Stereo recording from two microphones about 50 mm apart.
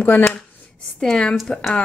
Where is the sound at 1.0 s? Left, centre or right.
Centre.